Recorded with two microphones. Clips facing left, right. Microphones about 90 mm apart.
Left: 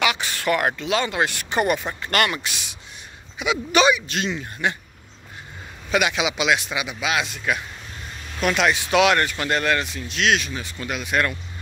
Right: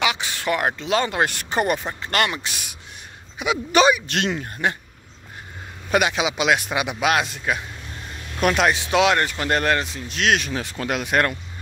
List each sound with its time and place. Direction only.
0.0 s a sound: 20° right (ahead or behind)
0.8 s speech: 35° right (ahead or behind)
3.3 s speech: 40° right (ahead or behind)
4.1 s speech: 70° right (ahead or behind)
4.4 s speech: 40° right (ahead or behind)
5.9 s speech: 35° right (ahead or behind); by 7.2 s 60° right (ahead or behind)
7.5 s speech: 30° right (ahead or behind)
8.4 s speech: 45° right (ahead or behind)
9.5 s speech: 40° right (ahead or behind)
10.5 s speech: 70° right (ahead or behind); by 11.3 s 50° right (ahead or behind)